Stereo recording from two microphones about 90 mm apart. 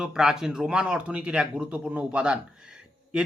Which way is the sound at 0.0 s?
5° right (ahead or behind).